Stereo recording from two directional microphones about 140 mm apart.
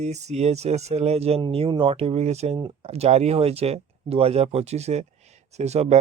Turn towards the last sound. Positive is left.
turn(degrees=-50)  # may be behind; listen again after turning